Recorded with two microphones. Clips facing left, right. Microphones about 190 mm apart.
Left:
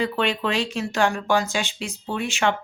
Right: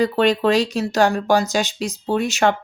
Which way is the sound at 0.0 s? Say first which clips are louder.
Right 7 dB; 40° right (ahead or behind).